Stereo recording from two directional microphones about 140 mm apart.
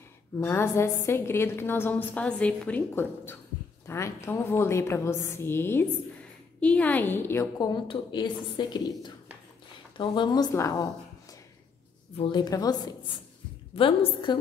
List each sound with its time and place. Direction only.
0.4 s a woman's voice: 20° left (ahead or behind)
12.2 s a woman's voice: 30° left (ahead or behind)